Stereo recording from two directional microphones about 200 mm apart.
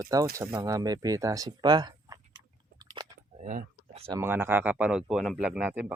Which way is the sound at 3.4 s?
40° right (ahead or behind).